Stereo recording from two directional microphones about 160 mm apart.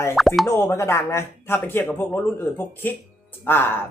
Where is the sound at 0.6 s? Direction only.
15° left (ahead or behind).